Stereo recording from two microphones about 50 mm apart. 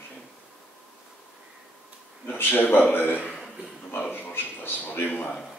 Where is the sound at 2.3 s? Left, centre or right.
Left.